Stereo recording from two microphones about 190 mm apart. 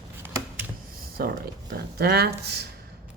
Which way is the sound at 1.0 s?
50° right (ahead or behind).